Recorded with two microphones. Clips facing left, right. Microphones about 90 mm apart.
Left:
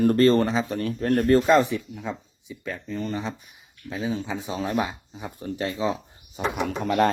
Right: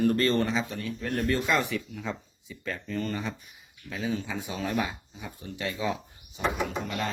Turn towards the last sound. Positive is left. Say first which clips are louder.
# left 10 dB
turn(degrees=55)  # may be behind; listen again after turning